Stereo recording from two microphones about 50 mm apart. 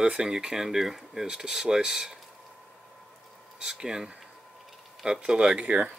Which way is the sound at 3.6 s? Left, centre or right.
Centre.